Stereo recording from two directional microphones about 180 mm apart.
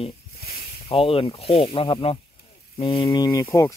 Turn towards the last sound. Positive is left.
turn(degrees=15)  # may be behind; listen again after turning